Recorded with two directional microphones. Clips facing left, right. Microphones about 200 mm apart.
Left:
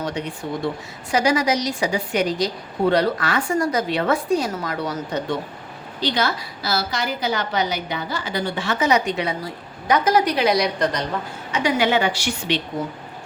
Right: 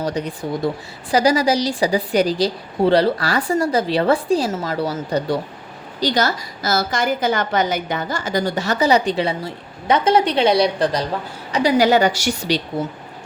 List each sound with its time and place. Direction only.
0.0 s a woman's voice: 40° right (ahead or behind)